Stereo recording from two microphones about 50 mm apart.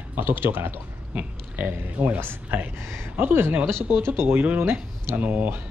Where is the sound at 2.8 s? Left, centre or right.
Right.